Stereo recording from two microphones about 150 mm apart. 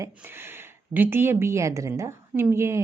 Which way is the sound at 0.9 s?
15° right (ahead or behind).